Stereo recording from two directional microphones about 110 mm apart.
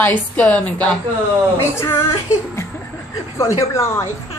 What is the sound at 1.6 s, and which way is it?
Speech, 25° left (ahead or behind).